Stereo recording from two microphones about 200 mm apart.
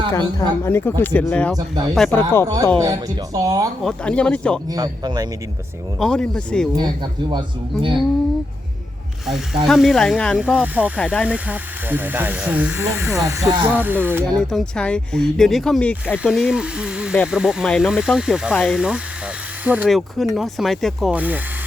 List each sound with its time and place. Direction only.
0.1 s speech: 15° left (ahead or behind)
1.5 s speech: 20° right (ahead or behind)
2.0 s speech: 10° left (ahead or behind)
2.7 s speech: 20° right (ahead or behind)
3.8 s speech: 5° left (ahead or behind)
4.7 s speech: 20° right (ahead or behind)
6.0 s speech: 5° left (ahead or behind)
6.7 s speech: 20° right (ahead or behind)
9.6 s speech: centre (ahead or behind)
10.9 s speech: 5° left (ahead or behind)
11.3 s speech: 5° right (ahead or behind)
14.5 s speech: 5° left (ahead or behind)